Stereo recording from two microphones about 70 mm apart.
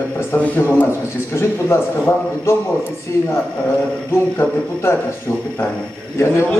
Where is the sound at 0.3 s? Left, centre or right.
Left.